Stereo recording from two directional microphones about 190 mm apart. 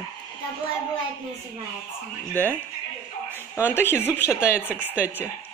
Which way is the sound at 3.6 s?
10° left (ahead or behind).